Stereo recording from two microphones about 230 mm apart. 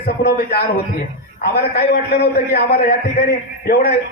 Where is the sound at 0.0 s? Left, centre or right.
Left.